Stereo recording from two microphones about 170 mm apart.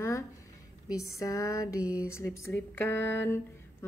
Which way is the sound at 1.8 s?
5° right (ahead or behind).